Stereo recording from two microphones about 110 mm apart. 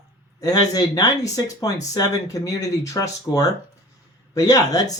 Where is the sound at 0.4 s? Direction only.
35° left (ahead or behind).